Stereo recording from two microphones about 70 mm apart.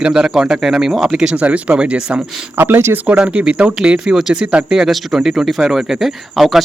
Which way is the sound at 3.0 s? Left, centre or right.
Centre.